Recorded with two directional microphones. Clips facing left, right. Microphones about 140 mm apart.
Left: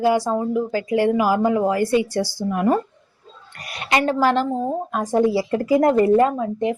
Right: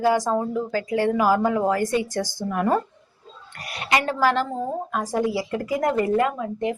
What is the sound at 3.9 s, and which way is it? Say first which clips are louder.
Speech: left 3 dB; 20° left (ahead or behind).